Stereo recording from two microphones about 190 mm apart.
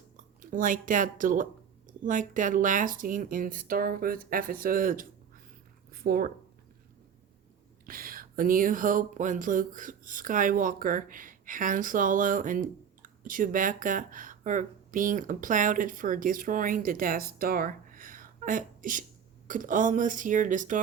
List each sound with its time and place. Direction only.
0.5 s speech: 45° right (ahead or behind)
7.9 s speech: 50° right (ahead or behind)